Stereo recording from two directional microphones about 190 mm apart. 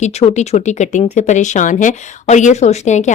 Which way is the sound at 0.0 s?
35° left (ahead or behind).